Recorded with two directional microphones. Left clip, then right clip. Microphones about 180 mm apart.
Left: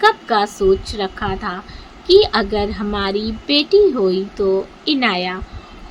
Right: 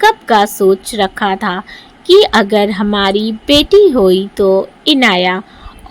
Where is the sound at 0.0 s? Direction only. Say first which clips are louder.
Right 5 dB; 45° right (ahead or behind).